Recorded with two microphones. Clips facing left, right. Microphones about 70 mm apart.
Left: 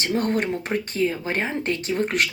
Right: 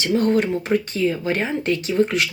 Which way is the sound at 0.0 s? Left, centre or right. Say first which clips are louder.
Right 4 dB; left.